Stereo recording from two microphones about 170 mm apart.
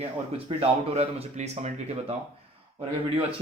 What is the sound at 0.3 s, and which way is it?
Speech, 35° right (ahead or behind).